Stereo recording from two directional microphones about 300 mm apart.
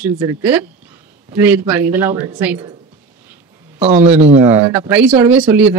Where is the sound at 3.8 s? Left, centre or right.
Right.